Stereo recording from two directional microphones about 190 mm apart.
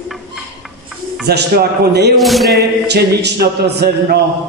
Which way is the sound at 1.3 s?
60° right (ahead or behind).